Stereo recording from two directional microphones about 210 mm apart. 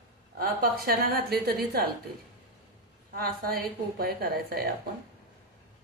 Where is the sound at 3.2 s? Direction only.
45° right (ahead or behind).